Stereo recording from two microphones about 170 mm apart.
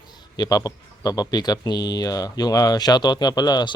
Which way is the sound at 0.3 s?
20° left (ahead or behind).